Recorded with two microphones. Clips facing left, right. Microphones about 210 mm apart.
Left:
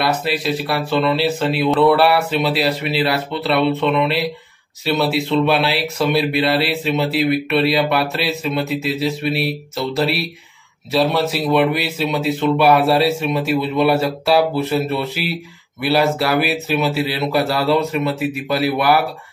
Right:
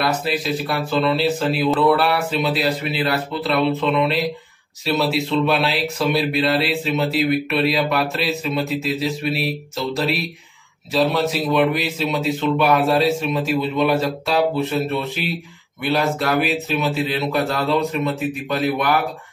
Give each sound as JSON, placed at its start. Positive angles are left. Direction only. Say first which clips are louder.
{"t": 0.0, "sound": "speech", "louder": "left 2 dB", "side_deg": 0}